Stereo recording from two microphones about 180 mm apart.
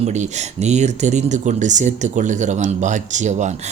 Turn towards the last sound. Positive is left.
turn(degrees=-40)  # may be behind; listen again after turning